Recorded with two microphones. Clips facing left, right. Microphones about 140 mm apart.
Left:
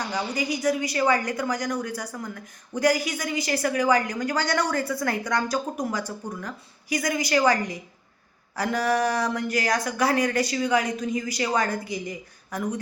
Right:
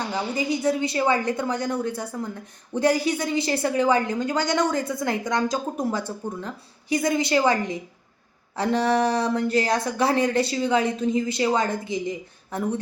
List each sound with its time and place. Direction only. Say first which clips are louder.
0.3 s a woman's voice: right 2 dB; 25° right (ahead or behind)